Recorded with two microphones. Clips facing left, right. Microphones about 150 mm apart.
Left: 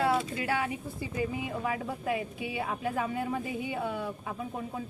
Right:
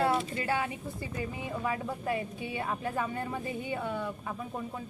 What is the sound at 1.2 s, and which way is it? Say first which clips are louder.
Speech: left 3 dB; 5° left (ahead or behind).